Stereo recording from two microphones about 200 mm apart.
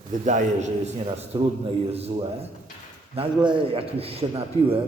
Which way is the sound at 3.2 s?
25° right (ahead or behind).